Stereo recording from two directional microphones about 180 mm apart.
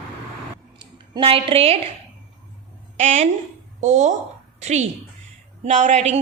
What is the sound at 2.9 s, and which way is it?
A woman's voice, 40° right (ahead or behind).